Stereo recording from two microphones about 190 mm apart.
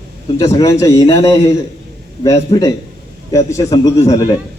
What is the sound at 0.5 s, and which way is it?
A man's voice, 15° left (ahead or behind).